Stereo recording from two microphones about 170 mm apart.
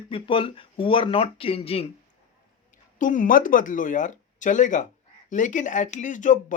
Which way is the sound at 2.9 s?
50° left (ahead or behind).